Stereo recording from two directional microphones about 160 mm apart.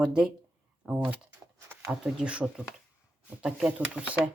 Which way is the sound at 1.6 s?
15° right (ahead or behind).